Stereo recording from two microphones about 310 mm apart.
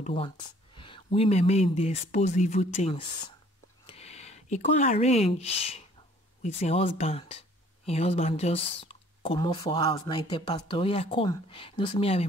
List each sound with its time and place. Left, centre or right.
0.0 s speech: centre